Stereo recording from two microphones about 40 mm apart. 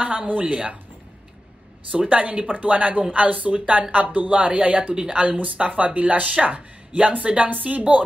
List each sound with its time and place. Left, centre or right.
0.0 s speech: right
1.9 s speech: right